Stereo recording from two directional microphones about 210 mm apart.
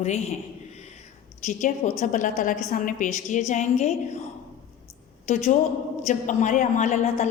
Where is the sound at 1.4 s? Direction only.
35° left (ahead or behind).